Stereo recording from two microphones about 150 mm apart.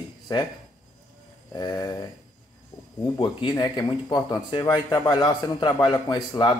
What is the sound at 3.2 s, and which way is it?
Speech, 30° left (ahead or behind).